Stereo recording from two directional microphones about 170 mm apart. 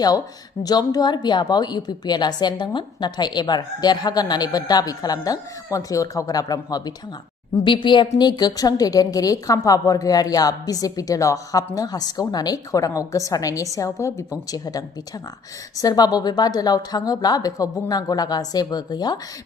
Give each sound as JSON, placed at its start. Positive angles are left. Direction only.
{"t": 0.6, "sound": "a woman's voice", "side_deg": 20}